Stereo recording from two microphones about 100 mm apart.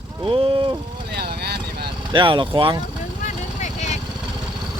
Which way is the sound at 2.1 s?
55° right (ahead or behind).